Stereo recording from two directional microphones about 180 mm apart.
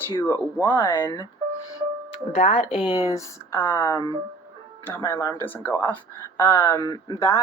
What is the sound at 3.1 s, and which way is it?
Speech, 15° left (ahead or behind).